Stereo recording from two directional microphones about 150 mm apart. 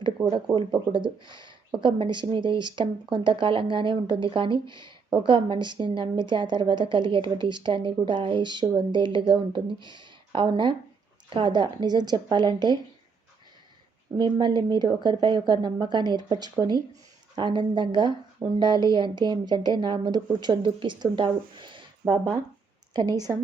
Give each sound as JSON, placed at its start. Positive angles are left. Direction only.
{"t": 0.6, "sound": "a woman's voice", "side_deg": -35}
{"t": 14.2, "sound": "a woman's voice", "side_deg": -30}